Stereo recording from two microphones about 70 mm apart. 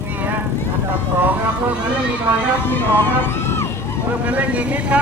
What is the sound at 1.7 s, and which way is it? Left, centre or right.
Speech, centre.